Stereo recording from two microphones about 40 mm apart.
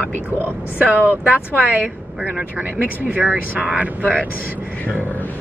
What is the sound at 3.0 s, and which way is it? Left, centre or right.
Speech, right.